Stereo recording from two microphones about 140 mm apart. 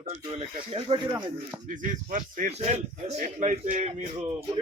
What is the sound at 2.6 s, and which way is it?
Speech, 50° right (ahead or behind).